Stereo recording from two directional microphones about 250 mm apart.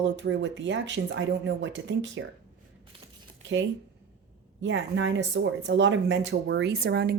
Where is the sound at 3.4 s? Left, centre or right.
Right.